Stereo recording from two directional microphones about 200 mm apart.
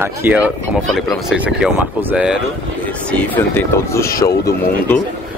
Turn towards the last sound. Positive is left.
turn(degrees=15)  # may be behind; listen again after turning